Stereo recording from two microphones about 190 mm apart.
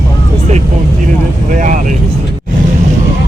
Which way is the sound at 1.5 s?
45° right (ahead or behind).